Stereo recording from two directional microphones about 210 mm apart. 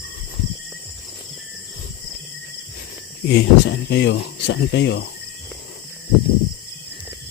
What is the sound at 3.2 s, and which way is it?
Speech, 55° left (ahead or behind).